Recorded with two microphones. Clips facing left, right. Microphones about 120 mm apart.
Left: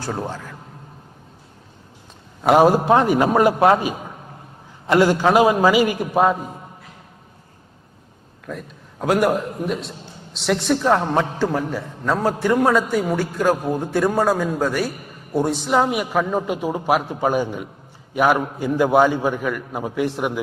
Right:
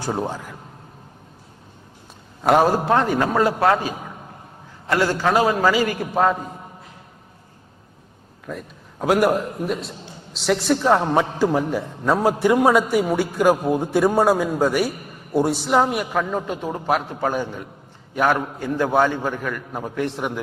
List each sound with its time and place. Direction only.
0.0 s a man's voice: 15° right (ahead or behind)
2.6 s a man's voice: 15° left (ahead or behind)
8.4 s a man's voice: centre (ahead or behind)